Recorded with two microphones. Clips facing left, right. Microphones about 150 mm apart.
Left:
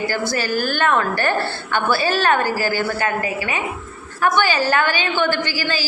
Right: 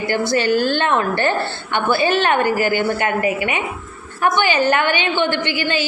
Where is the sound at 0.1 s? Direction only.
25° right (ahead or behind).